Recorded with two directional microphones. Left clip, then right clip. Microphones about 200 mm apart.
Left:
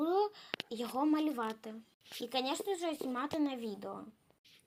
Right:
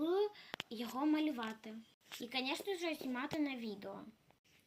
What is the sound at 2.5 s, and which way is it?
Speech, 15° left (ahead or behind).